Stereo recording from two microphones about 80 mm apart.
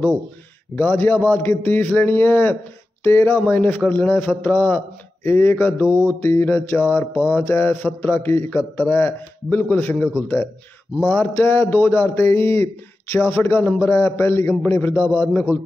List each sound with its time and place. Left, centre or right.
0.7 s a man's voice: left
5.9 s mantra: right
6.2 s a man's voice: left